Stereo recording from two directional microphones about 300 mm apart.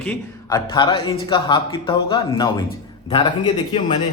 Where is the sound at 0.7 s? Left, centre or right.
Centre.